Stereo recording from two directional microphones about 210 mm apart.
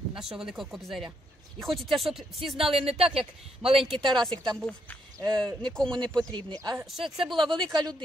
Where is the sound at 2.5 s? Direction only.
25° right (ahead or behind).